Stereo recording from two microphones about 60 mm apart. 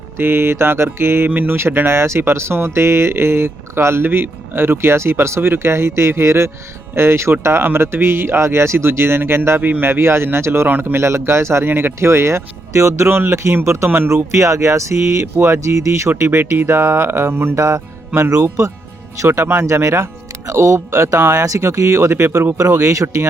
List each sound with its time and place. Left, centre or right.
0.2 s speech: right
1.3 s speech: right
9.6 s speech: right
10.7 s speech: right
10.9 s speech: right
11.7 s speech: right
11.9 s speech: right
14.1 s speech: right
17.6 s music: right
18.4 s speech: right
22.9 s speech: right